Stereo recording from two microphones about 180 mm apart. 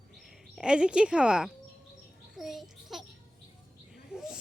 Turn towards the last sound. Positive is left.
turn(degrees=-5)  # may be behind; listen again after turning